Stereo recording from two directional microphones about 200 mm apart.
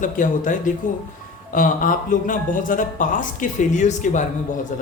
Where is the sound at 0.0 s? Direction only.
40° left (ahead or behind).